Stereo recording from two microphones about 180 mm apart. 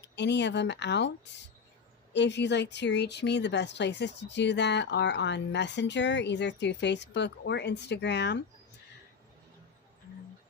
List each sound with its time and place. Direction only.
0.0 s speech: 75° left (ahead or behind)